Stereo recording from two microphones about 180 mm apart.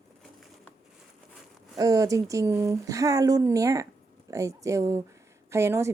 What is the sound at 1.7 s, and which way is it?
A woman's voice, 20° right (ahead or behind).